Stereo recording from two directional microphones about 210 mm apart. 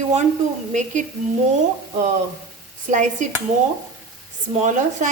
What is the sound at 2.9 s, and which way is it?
Speech, 35° right (ahead or behind).